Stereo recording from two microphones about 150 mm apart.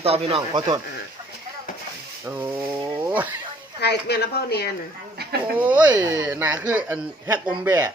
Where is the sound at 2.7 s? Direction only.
10° right (ahead or behind).